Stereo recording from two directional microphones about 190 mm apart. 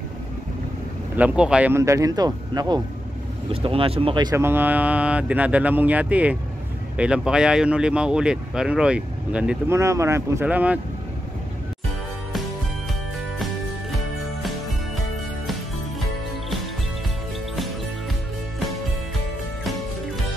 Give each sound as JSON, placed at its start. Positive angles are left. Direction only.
{"t": 1.1, "sound": "speech", "side_deg": -5}